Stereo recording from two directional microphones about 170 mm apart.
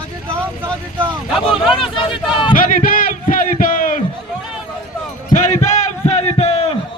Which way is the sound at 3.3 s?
55° left (ahead or behind).